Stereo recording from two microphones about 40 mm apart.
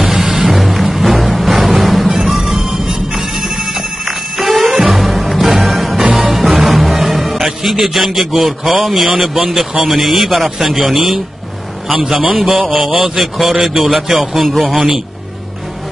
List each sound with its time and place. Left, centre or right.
0.1 s music: right
0.5 s music: centre
3.4 s ringtone: centre
4.0 s bell: centre
4.9 s music: centre
9.2 s a man's voice: centre
12.4 s speech: centre